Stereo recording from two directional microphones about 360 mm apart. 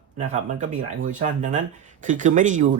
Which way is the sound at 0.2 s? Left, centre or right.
Right.